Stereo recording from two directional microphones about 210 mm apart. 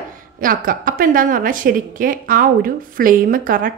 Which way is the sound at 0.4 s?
40° right (ahead or behind).